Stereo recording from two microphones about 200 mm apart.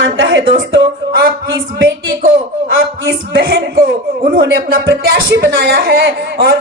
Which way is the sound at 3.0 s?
50° right (ahead or behind).